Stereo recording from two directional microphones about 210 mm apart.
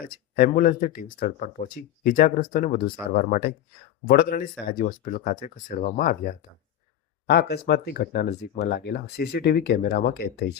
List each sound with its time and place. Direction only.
0.3 s speech: 40° left (ahead or behind)